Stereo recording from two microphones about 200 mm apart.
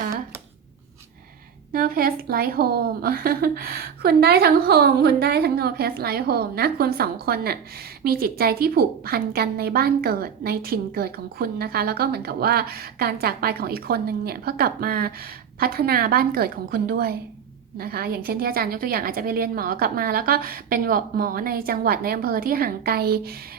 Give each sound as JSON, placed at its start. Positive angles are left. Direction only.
{"t": 1.7, "sound": "a woman's voice", "side_deg": -50}